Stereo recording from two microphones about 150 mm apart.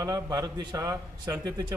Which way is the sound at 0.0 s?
25° right (ahead or behind).